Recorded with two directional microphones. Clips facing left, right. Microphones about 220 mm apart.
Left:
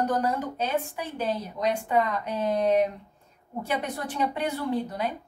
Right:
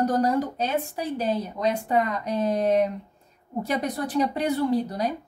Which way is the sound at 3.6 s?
35° right (ahead or behind).